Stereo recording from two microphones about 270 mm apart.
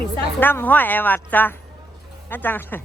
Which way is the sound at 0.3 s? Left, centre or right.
Centre.